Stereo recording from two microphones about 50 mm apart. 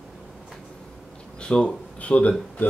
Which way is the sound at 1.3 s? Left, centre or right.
Centre.